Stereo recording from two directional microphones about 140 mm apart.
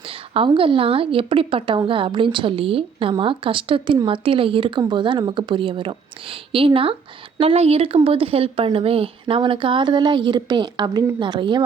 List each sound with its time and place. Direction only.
0.1 s a woman's voice: 40° right (ahead or behind)